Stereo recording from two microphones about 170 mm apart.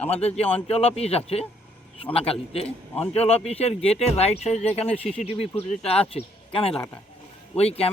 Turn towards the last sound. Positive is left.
turn(degrees=35)  # may be behind; listen again after turning